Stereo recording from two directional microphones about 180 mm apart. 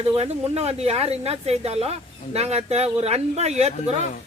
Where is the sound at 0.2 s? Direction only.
35° right (ahead or behind).